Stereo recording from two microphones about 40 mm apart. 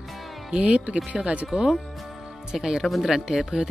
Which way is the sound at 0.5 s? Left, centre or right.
Right.